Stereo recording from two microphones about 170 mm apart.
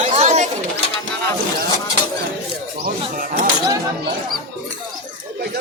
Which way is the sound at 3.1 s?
55° right (ahead or behind).